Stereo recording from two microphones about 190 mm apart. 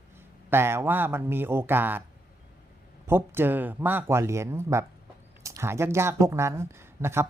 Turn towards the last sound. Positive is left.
turn(degrees=-15)  # may be behind; listen again after turning